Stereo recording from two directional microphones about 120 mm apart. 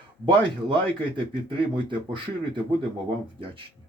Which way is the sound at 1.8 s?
40° right (ahead or behind).